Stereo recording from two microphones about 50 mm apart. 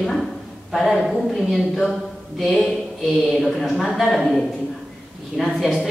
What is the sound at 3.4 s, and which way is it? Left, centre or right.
A man's voice, centre.